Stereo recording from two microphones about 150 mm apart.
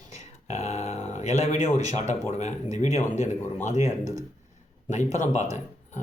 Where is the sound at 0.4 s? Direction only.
45° left (ahead or behind).